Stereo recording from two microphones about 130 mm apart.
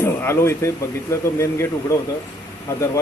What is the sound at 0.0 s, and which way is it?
A man's voice, 20° left (ahead or behind).